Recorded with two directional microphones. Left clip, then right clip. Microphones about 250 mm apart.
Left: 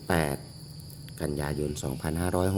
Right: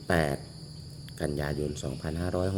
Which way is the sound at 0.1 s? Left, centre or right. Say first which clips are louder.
Right 1 dB; centre.